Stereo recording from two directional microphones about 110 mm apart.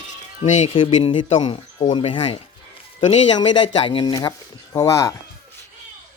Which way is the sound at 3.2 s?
45° left (ahead or behind).